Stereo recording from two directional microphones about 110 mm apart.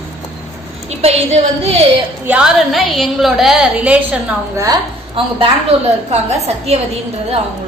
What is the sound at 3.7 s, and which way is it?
Speech, 10° right (ahead or behind).